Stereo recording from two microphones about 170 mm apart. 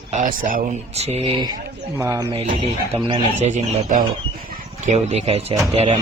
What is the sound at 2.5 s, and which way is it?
Speech, 30° right (ahead or behind).